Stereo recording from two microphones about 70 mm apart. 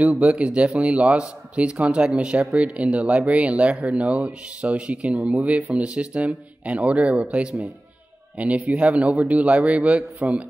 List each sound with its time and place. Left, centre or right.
0.2 s a man's voice: centre